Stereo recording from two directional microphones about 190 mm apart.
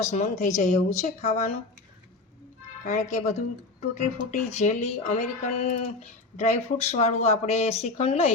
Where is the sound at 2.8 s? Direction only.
40° left (ahead or behind).